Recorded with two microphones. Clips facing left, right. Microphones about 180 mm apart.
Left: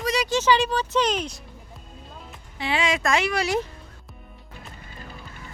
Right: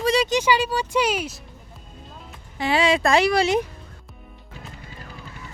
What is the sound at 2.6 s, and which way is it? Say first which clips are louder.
Speech: right 5 dB; 40° right (ahead or behind).